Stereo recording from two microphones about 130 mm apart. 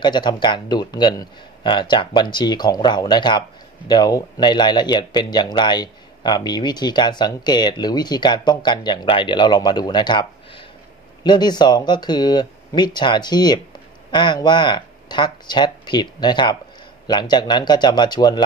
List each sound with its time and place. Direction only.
0.0 s speech: 35° left (ahead or behind)